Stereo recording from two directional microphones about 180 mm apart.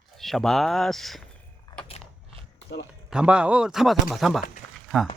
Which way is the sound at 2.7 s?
70° left (ahead or behind).